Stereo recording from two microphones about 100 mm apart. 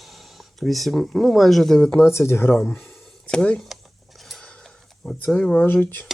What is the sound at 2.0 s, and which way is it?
Speech, 25° left (ahead or behind).